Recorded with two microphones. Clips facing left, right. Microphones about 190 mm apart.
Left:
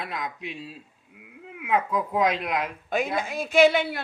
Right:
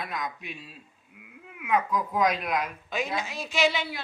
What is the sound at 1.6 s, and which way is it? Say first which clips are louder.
Speech: left 1 dB; 25° left (ahead or behind).